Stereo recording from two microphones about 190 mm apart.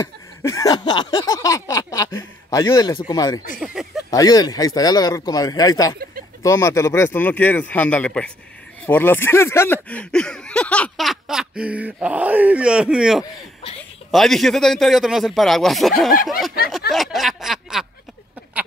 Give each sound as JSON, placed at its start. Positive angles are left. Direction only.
{"t": 0.4, "sound": "a man's voice", "side_deg": 15}
{"t": 3.5, "sound": "speech", "side_deg": -5}
{"t": 4.1, "sound": "a man's voice", "side_deg": 20}
{"t": 13.2, "sound": "speech", "side_deg": 30}
{"t": 14.1, "sound": "speech", "side_deg": 0}
{"t": 16.9, "sound": "snicker", "side_deg": 0}